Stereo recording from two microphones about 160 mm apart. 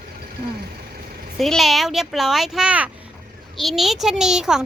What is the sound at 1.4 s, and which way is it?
Speech, centre (ahead or behind).